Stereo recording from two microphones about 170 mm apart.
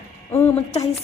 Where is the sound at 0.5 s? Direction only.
35° left (ahead or behind).